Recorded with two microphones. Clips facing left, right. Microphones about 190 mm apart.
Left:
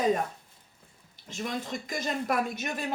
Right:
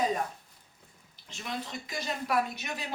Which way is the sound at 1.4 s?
50° left (ahead or behind).